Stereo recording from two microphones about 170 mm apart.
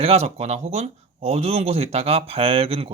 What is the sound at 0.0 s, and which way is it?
Speech, 40° right (ahead or behind).